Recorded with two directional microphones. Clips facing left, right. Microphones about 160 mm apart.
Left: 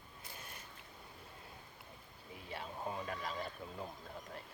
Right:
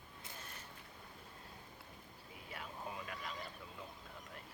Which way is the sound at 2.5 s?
30° left (ahead or behind).